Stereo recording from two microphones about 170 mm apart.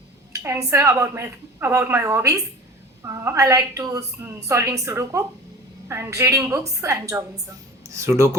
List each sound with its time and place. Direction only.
0.4 s a woman's voice: 15° right (ahead or behind)